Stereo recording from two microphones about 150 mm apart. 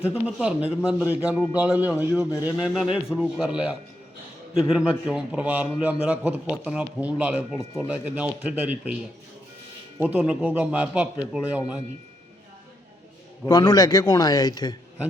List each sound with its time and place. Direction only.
0.0 s a man's voice: 10° right (ahead or behind)
4.7 s a man's voice: 5° right (ahead or behind)
7.6 s a man's voice: 20° left (ahead or behind)
7.9 s a man's voice: 10° right (ahead or behind)
10.0 s a man's voice: 10° right (ahead or behind)
13.4 s a man's voice: 25° left (ahead or behind)